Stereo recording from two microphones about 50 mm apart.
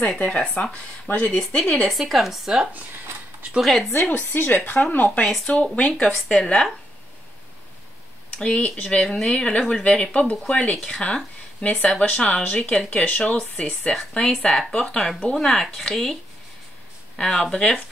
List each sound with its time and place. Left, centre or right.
0.6 s speech: left
1.5 s speech: centre
1.8 s speech: centre
3.6 s speech: centre
4.1 s speech: left
4.9 s speech: left; by 6.7 s centre
8.4 s speech: centre
12.0 s speech: left
13.6 s speech: centre
14.7 s speech: centre
17.2 s speech: centre